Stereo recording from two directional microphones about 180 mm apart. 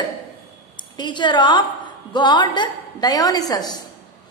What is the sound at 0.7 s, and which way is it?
A woman's voice, 25° left (ahead or behind).